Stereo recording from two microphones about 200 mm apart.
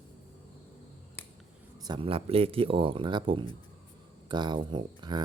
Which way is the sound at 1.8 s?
25° right (ahead or behind).